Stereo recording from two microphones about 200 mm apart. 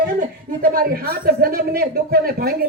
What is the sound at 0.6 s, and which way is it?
A woman's voice, 45° right (ahead or behind).